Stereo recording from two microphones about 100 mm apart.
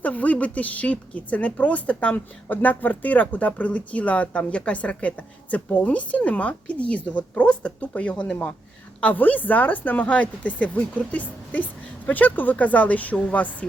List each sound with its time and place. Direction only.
0.0 s a woman's voice: 15° left (ahead or behind)